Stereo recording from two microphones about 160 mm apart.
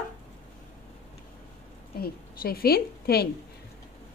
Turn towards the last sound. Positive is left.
turn(degrees=75)  # may be behind; listen again after turning